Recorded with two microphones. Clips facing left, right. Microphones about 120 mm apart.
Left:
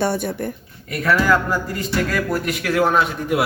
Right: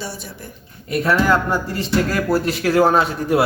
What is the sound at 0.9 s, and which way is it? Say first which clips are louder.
A man's voice: right 1 dB; 25° right (ahead or behind).